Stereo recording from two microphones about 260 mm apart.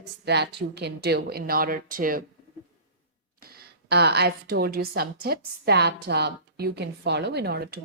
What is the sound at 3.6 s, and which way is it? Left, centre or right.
A woman's voice, right.